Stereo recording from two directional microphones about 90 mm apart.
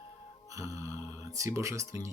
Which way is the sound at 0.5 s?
40° right (ahead or behind).